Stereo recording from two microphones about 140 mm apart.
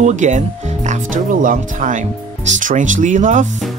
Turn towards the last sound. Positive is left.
turn(degrees=-60)  # may be behind; listen again after turning